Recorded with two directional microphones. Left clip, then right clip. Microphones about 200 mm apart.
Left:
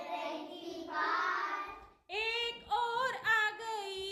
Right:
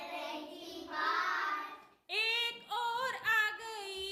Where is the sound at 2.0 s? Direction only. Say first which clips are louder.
Right 2 dB; centre (ahead or behind).